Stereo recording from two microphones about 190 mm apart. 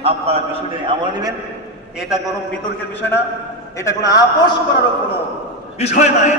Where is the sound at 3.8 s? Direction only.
20° left (ahead or behind).